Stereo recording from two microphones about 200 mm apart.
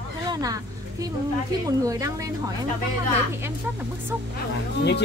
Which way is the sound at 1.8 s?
15° right (ahead or behind).